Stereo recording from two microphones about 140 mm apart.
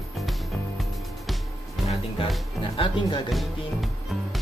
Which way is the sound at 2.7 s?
35° left (ahead or behind).